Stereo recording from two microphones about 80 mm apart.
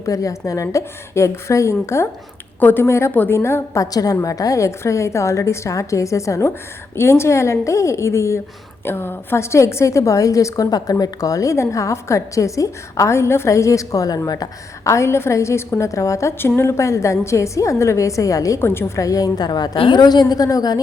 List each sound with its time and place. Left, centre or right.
0.0 s a woman's voice: left
2.6 s a woman's voice: left
3.9 s a woman's voice: left
14.8 s a woman's voice: left
18.6 s a woman's voice: left
18.9 s a woman's voice: left